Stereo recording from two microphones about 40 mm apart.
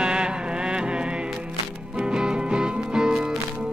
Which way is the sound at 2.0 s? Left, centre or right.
Centre.